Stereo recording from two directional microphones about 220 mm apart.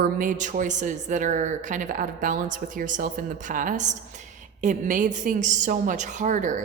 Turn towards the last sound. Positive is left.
turn(degrees=-35)  # may be behind; listen again after turning